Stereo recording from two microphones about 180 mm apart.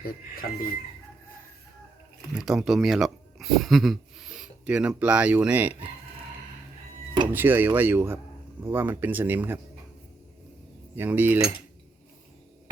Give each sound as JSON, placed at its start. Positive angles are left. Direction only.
{"t": 0.0, "sound": "speech", "side_deg": 55}
{"t": 2.3, "sound": "speech", "side_deg": 0}
{"t": 7.3, "sound": "speech", "side_deg": -10}
{"t": 10.9, "sound": "speech", "side_deg": -10}